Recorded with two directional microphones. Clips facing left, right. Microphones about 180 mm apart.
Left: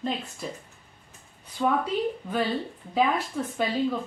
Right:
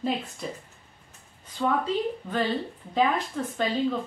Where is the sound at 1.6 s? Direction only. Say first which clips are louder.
Left 1 dB; 5° left (ahead or behind).